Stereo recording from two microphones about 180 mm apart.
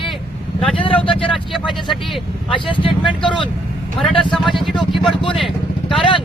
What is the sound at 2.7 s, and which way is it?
Speech, 25° left (ahead or behind).